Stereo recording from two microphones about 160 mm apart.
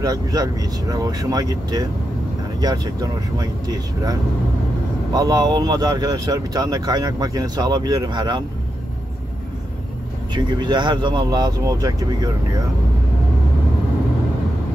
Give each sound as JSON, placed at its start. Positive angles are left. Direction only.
{"t": 0.0, "sound": "speech", "side_deg": -20}
{"t": 10.3, "sound": "speech", "side_deg": -30}